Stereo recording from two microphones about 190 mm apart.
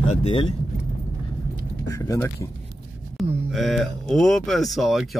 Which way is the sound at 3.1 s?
Centre (ahead or behind).